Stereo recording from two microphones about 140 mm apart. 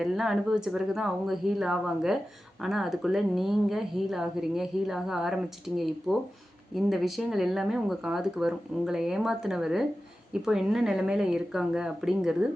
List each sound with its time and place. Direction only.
0.0 s speech: centre (ahead or behind)